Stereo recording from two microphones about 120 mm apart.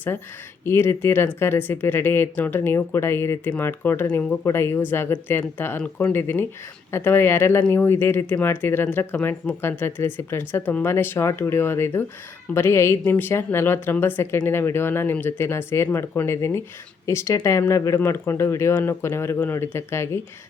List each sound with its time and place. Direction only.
0.6 s speech: 20° left (ahead or behind)